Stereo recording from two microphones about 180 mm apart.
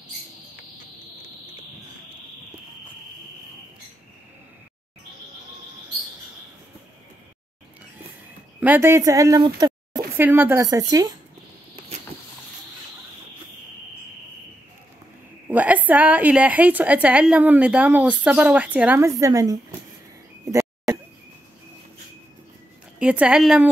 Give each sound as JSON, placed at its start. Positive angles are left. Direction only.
{"t": 8.5, "sound": "speech", "side_deg": -10}
{"t": 10.2, "sound": "a woman's voice", "side_deg": -10}
{"t": 15.4, "sound": "a woman's voice", "side_deg": -10}
{"t": 22.9, "sound": "a woman's voice", "side_deg": -5}